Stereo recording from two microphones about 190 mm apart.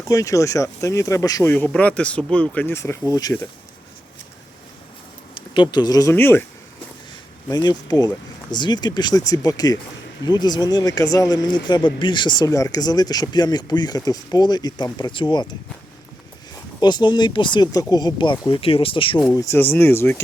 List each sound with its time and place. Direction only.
0.0 s speech: 15° left (ahead or behind)
5.3 s speech: 25° left (ahead or behind)
7.4 s speech: 20° left (ahead or behind)
16.8 s speech: 25° left (ahead or behind)
19.3 s speech: 15° left (ahead or behind)